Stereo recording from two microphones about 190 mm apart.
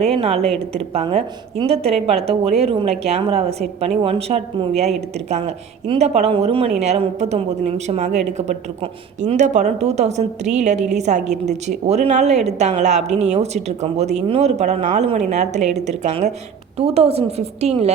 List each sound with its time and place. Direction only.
0.0 s speech: 30° right (ahead or behind)